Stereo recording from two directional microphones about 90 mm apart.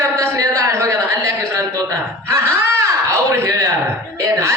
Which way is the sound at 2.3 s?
30° right (ahead or behind).